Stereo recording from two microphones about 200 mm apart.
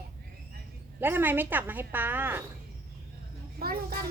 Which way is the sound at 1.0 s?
10° right (ahead or behind).